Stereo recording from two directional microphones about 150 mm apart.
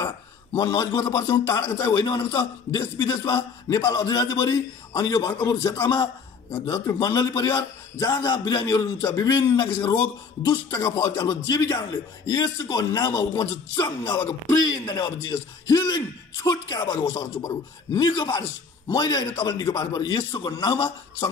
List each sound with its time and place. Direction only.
0.0 s a man's voice: 25° left (ahead or behind)